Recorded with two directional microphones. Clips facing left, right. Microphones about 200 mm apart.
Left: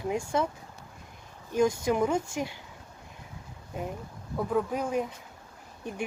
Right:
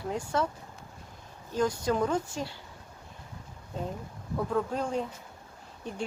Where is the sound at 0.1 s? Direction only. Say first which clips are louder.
Left 2 dB; 10° left (ahead or behind).